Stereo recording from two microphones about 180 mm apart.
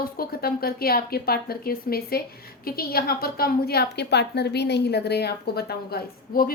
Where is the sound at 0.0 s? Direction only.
55° left (ahead or behind).